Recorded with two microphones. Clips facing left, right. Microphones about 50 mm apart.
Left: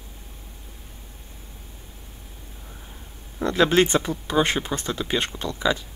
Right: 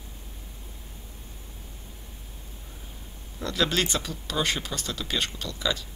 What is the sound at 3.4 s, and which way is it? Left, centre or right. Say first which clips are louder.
Speech: left 8 dB; left.